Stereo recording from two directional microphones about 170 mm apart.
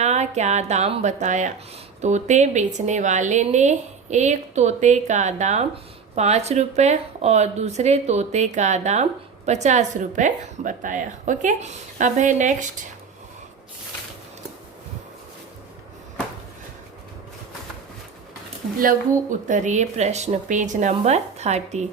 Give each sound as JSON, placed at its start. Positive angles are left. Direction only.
{"t": 0.0, "sound": "a woman's voice", "side_deg": -40}
{"t": 18.8, "sound": "a woman's voice", "side_deg": -50}